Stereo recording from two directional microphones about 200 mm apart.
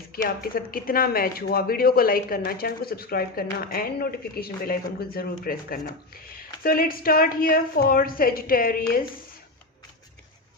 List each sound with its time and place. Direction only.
0.1 s speech: 45° left (ahead or behind)